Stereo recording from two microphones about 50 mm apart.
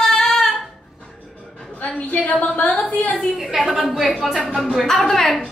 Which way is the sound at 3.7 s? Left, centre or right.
Centre.